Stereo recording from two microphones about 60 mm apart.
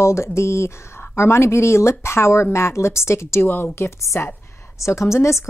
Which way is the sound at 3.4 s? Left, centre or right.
Left.